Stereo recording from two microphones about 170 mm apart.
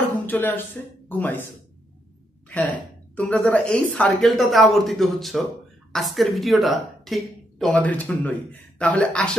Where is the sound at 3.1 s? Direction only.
10° left (ahead or behind).